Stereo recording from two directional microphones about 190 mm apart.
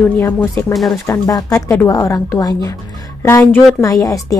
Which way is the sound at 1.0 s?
15° left (ahead or behind).